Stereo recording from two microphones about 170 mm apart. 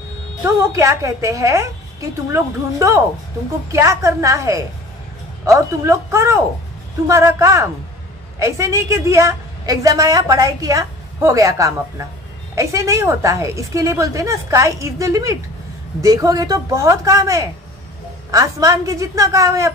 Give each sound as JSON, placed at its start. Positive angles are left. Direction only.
{"t": 0.6, "sound": "a woman's voice", "side_deg": -20}